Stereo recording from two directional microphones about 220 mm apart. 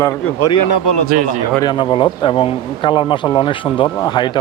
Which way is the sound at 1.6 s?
20° left (ahead or behind).